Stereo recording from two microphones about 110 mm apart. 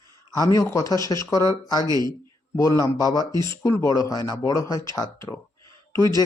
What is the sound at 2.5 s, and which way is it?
Speech, 30° left (ahead or behind).